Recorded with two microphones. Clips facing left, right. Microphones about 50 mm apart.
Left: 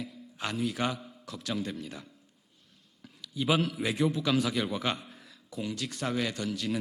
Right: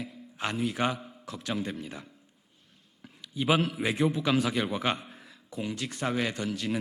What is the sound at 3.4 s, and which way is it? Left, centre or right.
A man's voice, right.